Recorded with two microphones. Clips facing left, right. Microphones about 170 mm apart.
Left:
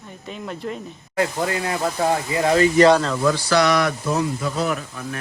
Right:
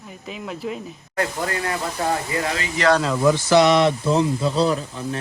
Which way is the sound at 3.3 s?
20° right (ahead or behind).